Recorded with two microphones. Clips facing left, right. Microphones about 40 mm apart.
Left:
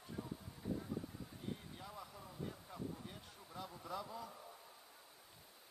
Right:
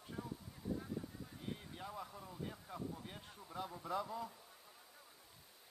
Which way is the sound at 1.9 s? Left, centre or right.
Centre.